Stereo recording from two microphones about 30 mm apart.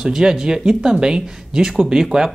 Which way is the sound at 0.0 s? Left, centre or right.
Right.